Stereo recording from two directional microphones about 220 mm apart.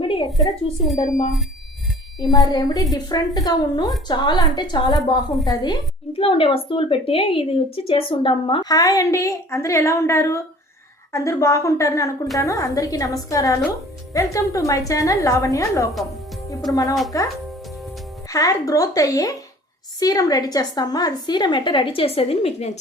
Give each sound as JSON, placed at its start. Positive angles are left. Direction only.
{"t": 0.3, "sound": "a woman's voice", "side_deg": 0}
{"t": 2.1, "sound": "a woman's voice", "side_deg": 15}